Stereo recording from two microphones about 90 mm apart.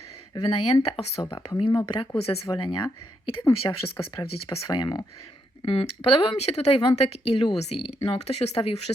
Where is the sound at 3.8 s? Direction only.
90° left.